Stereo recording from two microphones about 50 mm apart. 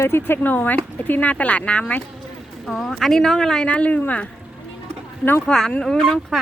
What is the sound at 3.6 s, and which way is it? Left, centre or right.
Speech, left.